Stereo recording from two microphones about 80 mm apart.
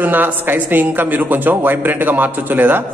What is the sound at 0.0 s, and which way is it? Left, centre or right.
A man's voice, right.